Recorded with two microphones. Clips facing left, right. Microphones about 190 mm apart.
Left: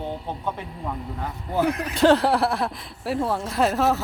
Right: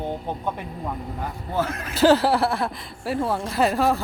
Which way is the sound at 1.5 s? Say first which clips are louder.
Left 4 dB; 15° left (ahead or behind).